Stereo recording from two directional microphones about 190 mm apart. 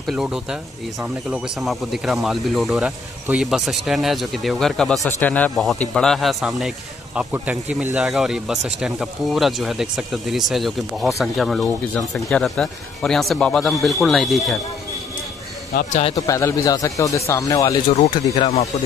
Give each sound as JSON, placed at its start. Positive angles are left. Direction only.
{"t": 0.0, "sound": "speech", "side_deg": 0}
{"t": 16.2, "sound": "speech", "side_deg": 15}